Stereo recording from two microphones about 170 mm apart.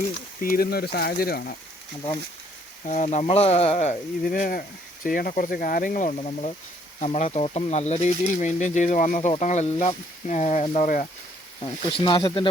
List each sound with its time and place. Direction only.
0.4 s speech: 60° left (ahead or behind)
2.8 s speech: 45° left (ahead or behind)
11.6 s speech: 30° left (ahead or behind)